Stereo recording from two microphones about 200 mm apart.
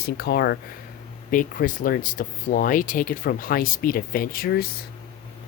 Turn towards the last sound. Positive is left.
turn(degrees=50)  # may be behind; listen again after turning